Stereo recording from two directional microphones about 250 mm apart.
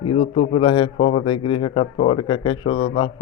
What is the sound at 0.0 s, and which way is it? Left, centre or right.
A man's voice, left.